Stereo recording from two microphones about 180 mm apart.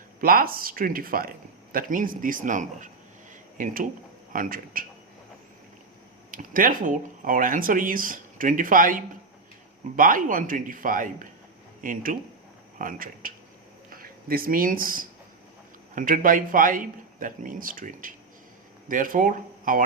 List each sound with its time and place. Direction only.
0.2 s speech: 55° right (ahead or behind)
6.3 s speech: 50° right (ahead or behind)